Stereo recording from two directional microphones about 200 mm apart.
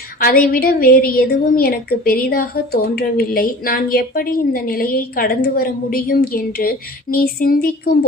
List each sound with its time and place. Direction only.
0.2 s a woman's voice: 45° left (ahead or behind)